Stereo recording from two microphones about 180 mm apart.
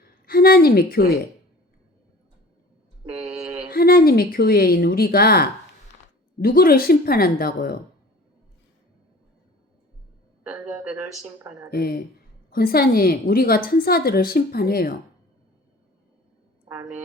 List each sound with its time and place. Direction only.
0.3 s a woman's voice: 55° left (ahead or behind)
3.7 s a woman's voice: 55° left (ahead or behind)
11.3 s speech: 10° right (ahead or behind)
11.7 s a woman's voice: 55° left (ahead or behind)